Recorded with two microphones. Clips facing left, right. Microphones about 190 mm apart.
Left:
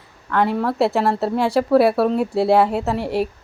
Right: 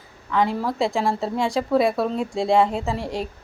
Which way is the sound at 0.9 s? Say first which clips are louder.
Left 4 dB; 65° left (ahead or behind).